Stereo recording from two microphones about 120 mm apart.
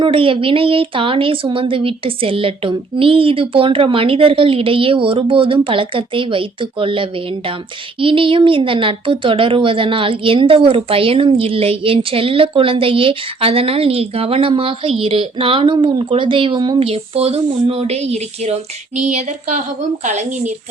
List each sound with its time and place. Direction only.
0.0 s a woman's voice: 45° right (ahead or behind)
16.8 s speech: 55° right (ahead or behind)
19.0 s a sound: 85° right
20.1 s speech: 75° right (ahead or behind)